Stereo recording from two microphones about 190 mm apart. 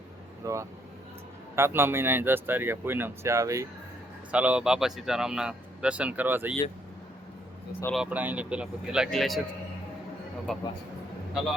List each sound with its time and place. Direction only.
0.4 s speech: 15° right (ahead or behind)
7.9 s speech: 5° right (ahead or behind)
10.5 s speech: centre (ahead or behind)